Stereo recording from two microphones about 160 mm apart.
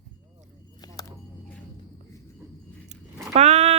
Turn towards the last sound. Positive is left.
turn(degrees=-45)  # may be behind; listen again after turning